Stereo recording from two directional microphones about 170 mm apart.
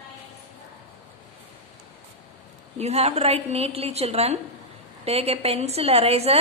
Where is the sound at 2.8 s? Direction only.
40° right (ahead or behind).